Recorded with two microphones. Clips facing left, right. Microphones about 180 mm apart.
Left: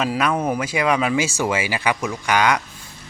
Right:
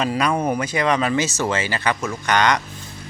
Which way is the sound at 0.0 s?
5° left (ahead or behind).